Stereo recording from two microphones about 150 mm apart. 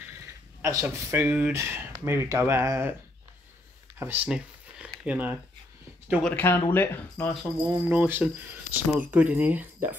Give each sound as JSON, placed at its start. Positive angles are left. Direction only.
{"t": 0.6, "sound": "speech", "side_deg": -20}
{"t": 4.0, "sound": "a sound", "side_deg": -10}
{"t": 6.2, "sound": "speech", "side_deg": 15}
{"t": 7.6, "sound": "speech", "side_deg": -15}